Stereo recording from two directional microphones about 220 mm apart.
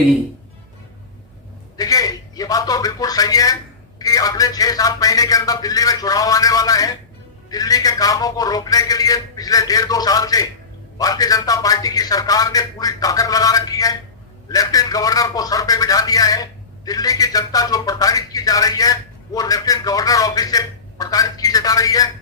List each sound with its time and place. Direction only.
1.7 s a man's voice: 15° left (ahead or behind)